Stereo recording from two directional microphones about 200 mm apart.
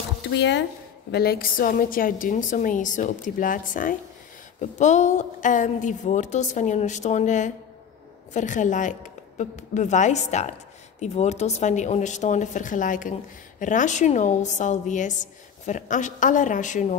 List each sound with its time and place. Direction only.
0.2 s speech: 60° left (ahead or behind)
1.1 s a woman's voice: 50° left (ahead or behind)